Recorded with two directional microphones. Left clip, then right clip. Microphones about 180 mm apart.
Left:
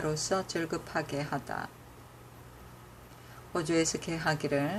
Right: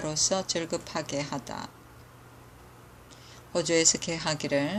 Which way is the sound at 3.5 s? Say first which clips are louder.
Right 5 dB; 15° right (ahead or behind).